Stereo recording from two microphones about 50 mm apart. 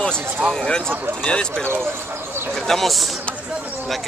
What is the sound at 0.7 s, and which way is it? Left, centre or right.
Speech, centre.